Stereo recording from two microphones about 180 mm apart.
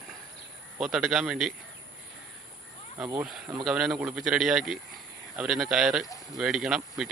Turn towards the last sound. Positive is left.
turn(degrees=0)  # may be behind; listen again after turning